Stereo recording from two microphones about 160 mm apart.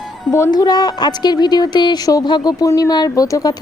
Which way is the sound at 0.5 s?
25° left (ahead or behind).